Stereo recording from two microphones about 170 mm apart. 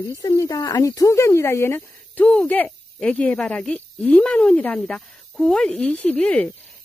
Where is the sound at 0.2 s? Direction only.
20° left (ahead or behind).